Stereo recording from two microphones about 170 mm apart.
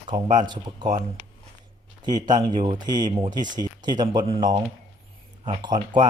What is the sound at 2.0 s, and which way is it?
Speech, 25° right (ahead or behind).